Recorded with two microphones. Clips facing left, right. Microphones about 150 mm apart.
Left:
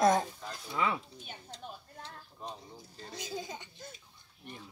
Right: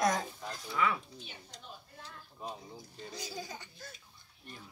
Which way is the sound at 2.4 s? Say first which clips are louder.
Right 1 dB; 5° right (ahead or behind).